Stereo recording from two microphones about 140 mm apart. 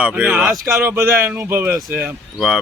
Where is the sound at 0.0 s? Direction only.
10° right (ahead or behind).